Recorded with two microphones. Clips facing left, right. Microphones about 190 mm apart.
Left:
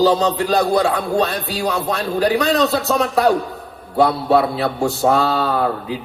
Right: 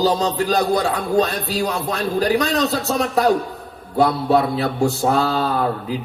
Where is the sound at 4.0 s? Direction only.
35° left (ahead or behind).